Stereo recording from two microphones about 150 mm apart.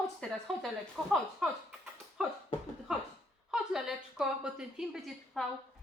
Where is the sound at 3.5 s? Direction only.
5° right (ahead or behind).